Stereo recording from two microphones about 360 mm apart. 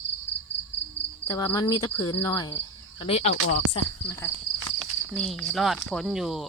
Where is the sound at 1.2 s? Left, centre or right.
Centre.